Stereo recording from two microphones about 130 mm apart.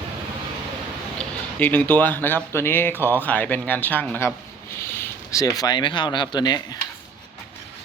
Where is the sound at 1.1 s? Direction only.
15° left (ahead or behind).